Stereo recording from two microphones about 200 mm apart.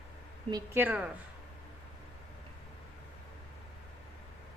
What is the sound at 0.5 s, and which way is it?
Speech, 10° right (ahead or behind).